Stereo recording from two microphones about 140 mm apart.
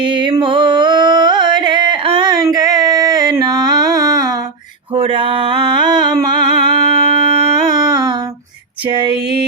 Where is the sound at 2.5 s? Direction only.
25° right (ahead or behind).